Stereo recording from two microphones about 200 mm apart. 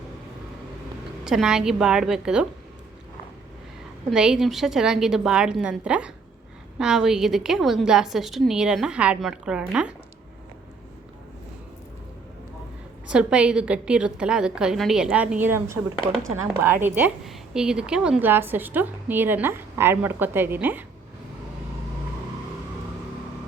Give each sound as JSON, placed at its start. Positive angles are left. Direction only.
{"t": 1.2, "sound": "a woman's voice", "side_deg": -5}
{"t": 4.1, "sound": "a woman's voice", "side_deg": -5}
{"t": 13.1, "sound": "a woman's voice", "side_deg": -5}